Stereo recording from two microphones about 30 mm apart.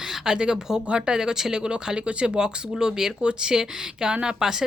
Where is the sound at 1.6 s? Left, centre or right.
Right.